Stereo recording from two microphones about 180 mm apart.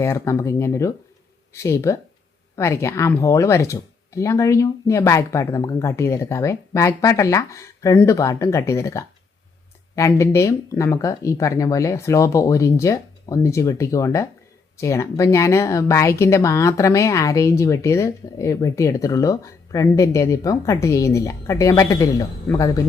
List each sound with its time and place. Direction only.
0.0 s speech: 15° left (ahead or behind)